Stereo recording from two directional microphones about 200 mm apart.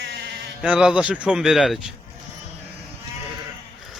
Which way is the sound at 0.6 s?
5° right (ahead or behind).